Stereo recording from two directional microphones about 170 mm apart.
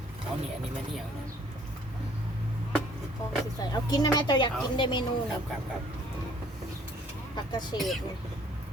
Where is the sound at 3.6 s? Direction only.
20° left (ahead or behind).